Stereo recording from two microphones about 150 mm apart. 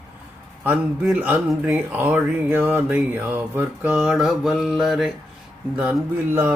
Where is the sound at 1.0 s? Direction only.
10° right (ahead or behind).